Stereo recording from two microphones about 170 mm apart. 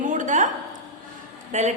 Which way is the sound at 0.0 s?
45° right (ahead or behind).